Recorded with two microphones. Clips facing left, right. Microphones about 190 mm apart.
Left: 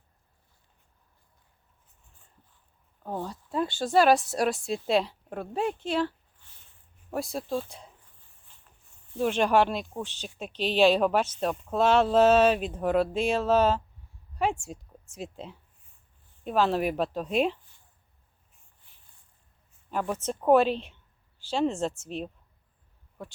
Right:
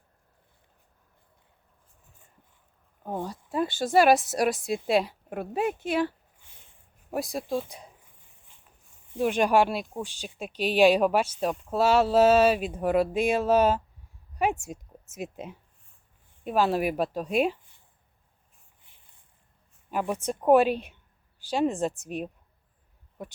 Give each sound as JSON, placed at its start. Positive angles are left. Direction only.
{"t": 3.0, "sound": "speech", "side_deg": -10}
{"t": 5.8, "sound": "a sound", "side_deg": -15}
{"t": 9.1, "sound": "speech", "side_deg": -10}
{"t": 19.9, "sound": "speech", "side_deg": -15}